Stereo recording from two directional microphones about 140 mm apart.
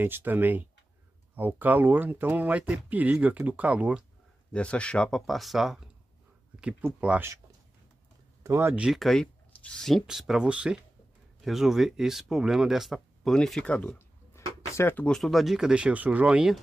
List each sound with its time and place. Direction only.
0.0 s speech: 15° right (ahead or behind)
4.5 s speech: 10° left (ahead or behind)
7.0 s speech: 10° right (ahead or behind)
8.5 s speech: 20° right (ahead or behind)
8.7 s speech: 5° right (ahead or behind); by 15.0 s 15° left (ahead or behind)
15.0 s speech: 5° left (ahead or behind)